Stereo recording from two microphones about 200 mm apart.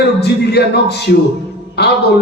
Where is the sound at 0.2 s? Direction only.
55° left (ahead or behind).